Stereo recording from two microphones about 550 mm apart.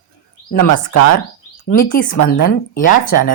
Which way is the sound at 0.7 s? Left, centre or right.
Left.